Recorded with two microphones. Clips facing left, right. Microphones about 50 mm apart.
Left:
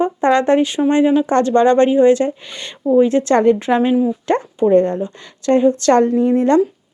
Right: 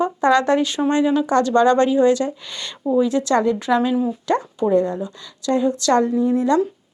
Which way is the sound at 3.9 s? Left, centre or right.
Centre.